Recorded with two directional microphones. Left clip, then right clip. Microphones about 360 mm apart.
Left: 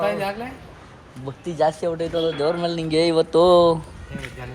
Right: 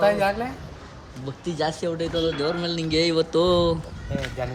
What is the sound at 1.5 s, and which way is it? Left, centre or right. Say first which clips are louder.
Speech: left 5 dB; centre.